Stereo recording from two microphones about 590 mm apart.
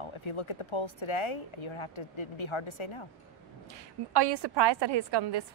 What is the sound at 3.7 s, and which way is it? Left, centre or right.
A woman's voice, right.